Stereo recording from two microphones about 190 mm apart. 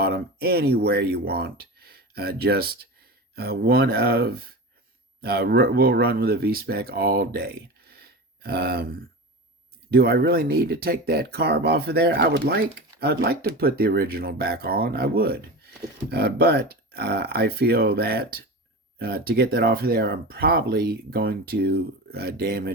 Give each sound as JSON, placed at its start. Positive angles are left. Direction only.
{"t": 0.0, "sound": "speech", "side_deg": -55}